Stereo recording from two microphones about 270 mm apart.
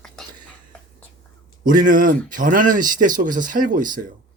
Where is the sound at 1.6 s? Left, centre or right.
Right.